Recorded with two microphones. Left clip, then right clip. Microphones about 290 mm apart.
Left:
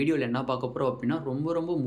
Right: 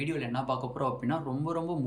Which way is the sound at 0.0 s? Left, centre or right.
Centre.